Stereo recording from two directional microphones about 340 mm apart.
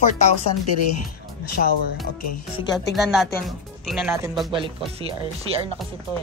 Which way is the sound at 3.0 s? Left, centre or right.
Centre.